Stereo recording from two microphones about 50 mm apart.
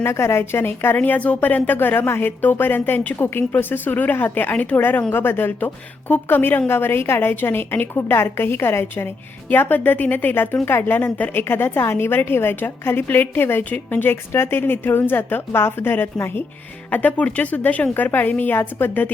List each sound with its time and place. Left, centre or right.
0.0 s a woman's voice: left
0.9 s a woman's voice: left
16.9 s speech: left